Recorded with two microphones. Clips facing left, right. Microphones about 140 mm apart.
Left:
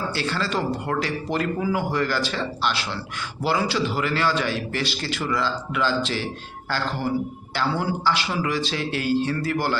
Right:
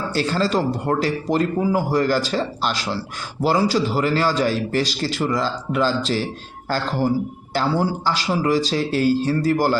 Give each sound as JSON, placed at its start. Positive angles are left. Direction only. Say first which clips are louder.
{"t": 0.1, "sound": "speech", "louder": "right 5 dB", "side_deg": -40}